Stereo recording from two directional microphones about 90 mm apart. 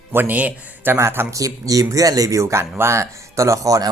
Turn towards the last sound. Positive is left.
turn(degrees=-40)  # may be behind; listen again after turning